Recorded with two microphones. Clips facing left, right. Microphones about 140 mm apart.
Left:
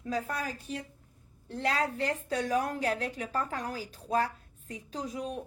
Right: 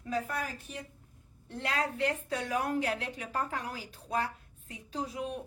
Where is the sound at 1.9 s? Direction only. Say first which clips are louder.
Left 1 dB; 35° left (ahead or behind).